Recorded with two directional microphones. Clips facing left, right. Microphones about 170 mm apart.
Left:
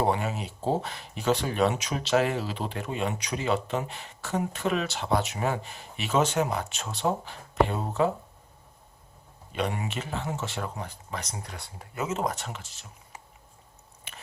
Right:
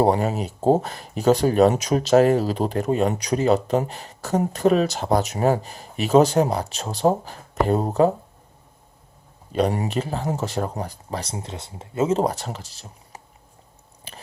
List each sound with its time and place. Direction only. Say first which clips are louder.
0.0 s speech: right 7 dB; 40° right (ahead or behind)
9.5 s speech: right 8 dB; 35° right (ahead or behind)
14.1 s biting: right 5 dB; 35° right (ahead or behind)